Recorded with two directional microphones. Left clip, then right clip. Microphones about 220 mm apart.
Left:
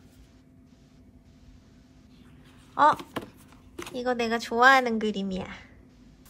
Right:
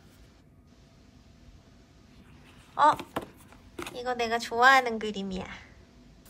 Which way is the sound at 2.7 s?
Centre (ahead or behind).